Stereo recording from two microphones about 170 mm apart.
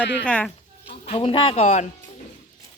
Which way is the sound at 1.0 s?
35° left (ahead or behind).